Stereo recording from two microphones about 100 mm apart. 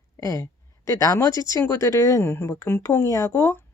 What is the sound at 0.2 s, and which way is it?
Speech, 30° left (ahead or behind).